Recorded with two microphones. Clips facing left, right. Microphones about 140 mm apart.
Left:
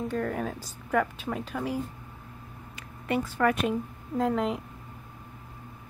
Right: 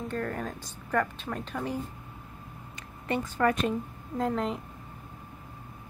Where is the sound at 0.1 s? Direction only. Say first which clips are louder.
Left 3 dB; 5° left (ahead or behind).